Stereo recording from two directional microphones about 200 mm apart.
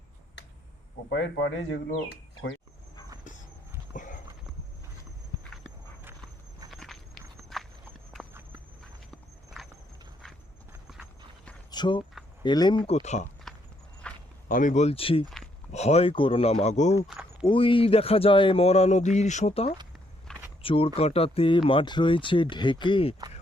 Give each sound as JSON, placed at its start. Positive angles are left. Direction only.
{"t": 1.1, "sound": "speech", "side_deg": 65}
{"t": 3.9, "sound": "dog", "side_deg": 40}
{"t": 5.3, "sound": "dog", "side_deg": -20}
{"t": 6.7, "sound": "walk", "side_deg": 0}
{"t": 9.6, "sound": "horse", "side_deg": 0}
{"t": 11.7, "sound": "speech", "side_deg": 20}
{"t": 12.9, "sound": "speech", "side_deg": 35}
{"t": 13.5, "sound": "walk", "side_deg": 0}
{"t": 14.0, "sound": "a sound", "side_deg": 5}
{"t": 14.4, "sound": "speech", "side_deg": 40}